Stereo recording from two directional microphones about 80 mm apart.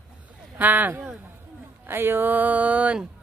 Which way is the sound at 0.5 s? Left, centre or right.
Right.